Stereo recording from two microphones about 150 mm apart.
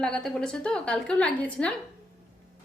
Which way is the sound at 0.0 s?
5° left (ahead or behind).